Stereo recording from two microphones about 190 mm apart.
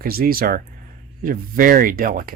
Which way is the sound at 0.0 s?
50° right (ahead or behind).